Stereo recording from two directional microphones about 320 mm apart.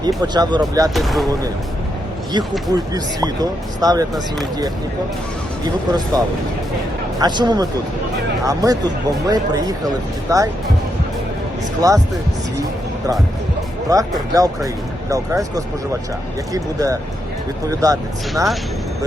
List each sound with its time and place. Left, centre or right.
0.3 s speech: centre
0.9 s speech: centre
2.3 s speech: centre
5.6 s speech: centre
11.8 s speech: centre
13.9 s speech: centre